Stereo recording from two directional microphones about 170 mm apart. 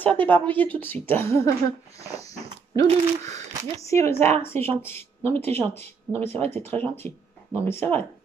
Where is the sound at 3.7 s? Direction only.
15° left (ahead or behind).